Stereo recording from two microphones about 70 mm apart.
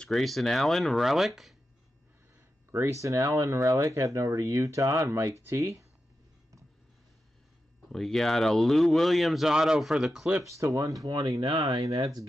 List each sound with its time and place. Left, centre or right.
0.0 s speech: centre
2.7 s speech: right
7.9 s speech: centre
10.5 s speech: right